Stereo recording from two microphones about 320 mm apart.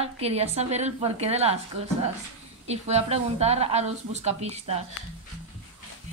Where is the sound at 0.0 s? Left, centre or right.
Centre.